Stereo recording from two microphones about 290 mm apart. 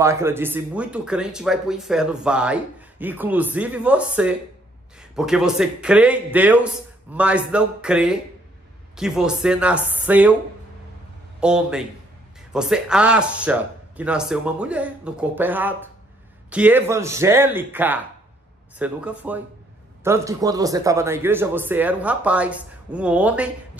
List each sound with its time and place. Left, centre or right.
0.0 s speech: centre
11.3 s a man's voice: centre